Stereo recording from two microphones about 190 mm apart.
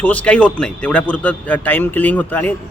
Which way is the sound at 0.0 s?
5° left (ahead or behind).